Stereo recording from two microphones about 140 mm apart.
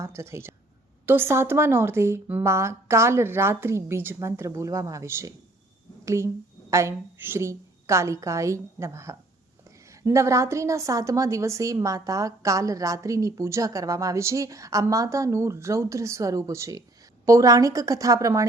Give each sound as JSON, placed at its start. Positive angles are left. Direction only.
{"t": 0.0, "sound": "a woman's voice", "side_deg": -20}